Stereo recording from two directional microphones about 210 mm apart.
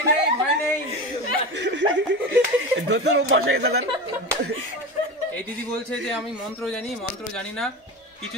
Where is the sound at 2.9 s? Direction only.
55° right (ahead or behind).